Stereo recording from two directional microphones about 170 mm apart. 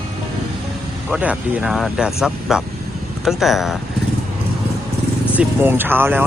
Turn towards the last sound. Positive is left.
turn(degrees=-10)  # may be behind; listen again after turning